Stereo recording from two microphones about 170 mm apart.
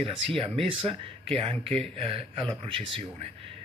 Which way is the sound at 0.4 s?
30° right (ahead or behind).